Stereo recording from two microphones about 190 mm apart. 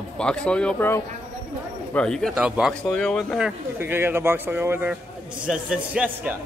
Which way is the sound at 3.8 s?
10° right (ahead or behind).